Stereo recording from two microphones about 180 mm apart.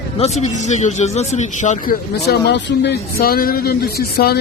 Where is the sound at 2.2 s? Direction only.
65° left (ahead or behind).